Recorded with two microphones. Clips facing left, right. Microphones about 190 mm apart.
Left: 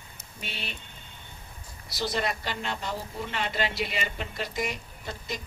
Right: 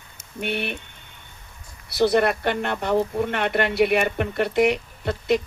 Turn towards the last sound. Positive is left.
turn(degrees=-65)  # may be behind; listen again after turning